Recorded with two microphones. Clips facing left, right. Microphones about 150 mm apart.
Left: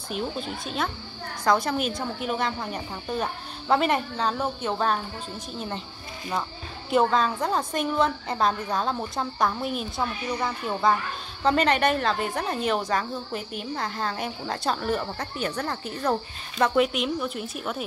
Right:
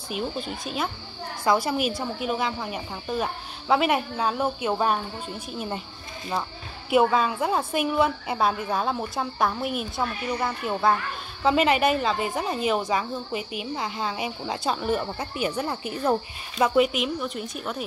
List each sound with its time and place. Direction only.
0.1 s a woman's voice: 5° right (ahead or behind)
6.9 s a woman's voice: 5° right (ahead or behind)